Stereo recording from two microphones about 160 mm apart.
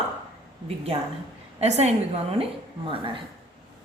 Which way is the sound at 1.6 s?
45° right (ahead or behind).